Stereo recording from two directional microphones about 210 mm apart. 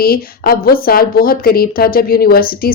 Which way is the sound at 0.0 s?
45° left (ahead or behind).